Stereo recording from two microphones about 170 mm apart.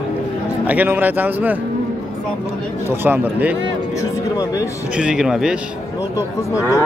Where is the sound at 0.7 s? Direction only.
10° right (ahead or behind).